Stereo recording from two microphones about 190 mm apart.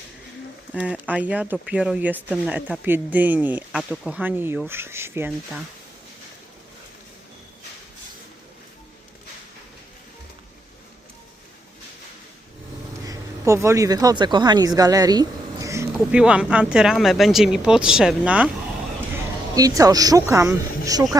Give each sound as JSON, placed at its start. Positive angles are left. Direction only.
{"t": 0.8, "sound": "speech", "side_deg": -5}
{"t": 13.1, "sound": "speech", "side_deg": -15}
{"t": 19.5, "sound": "speech", "side_deg": -20}